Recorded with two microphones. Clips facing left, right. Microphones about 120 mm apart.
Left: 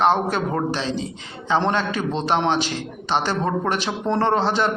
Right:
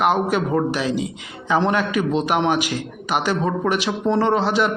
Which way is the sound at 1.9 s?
10° right (ahead or behind).